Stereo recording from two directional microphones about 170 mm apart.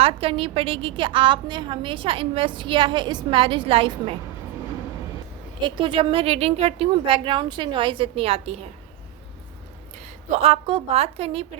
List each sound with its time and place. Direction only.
0.0 s a woman's voice: 35° right (ahead or behind)
5.6 s a woman's voice: 30° right (ahead or behind)
10.4 s a woman's voice: 35° right (ahead or behind)